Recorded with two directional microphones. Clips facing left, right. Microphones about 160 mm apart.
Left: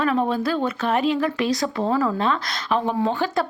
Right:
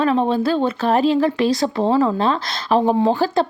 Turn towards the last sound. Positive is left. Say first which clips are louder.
# right 5 dB
turn(degrees=-30)  # may be behind; listen again after turning